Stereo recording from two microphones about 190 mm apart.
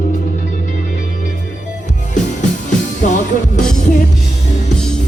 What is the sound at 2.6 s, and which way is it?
Music, 40° left (ahead or behind).